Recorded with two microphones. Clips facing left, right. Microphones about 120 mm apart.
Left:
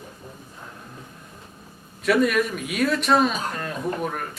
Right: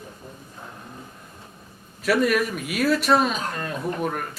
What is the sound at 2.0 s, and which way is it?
A man's voice, centre (ahead or behind).